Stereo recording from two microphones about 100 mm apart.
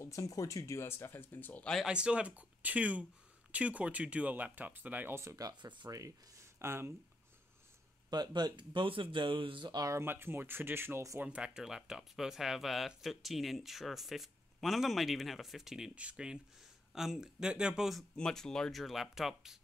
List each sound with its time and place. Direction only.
0.0 s speech: 30° left (ahead or behind)
1.9 s speech: 10° right (ahead or behind)
5.3 s speech: 40° right (ahead or behind)
5.9 s speech: 35° right (ahead or behind)
6.6 s speech: 25° right (ahead or behind)
8.1 s speech: 45° right (ahead or behind)
9.9 s speech: 25° right (ahead or behind)
11.1 s speech: 10° right (ahead or behind)